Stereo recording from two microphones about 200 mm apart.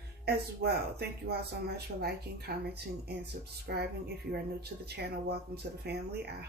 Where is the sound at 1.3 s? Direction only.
55° right (ahead or behind).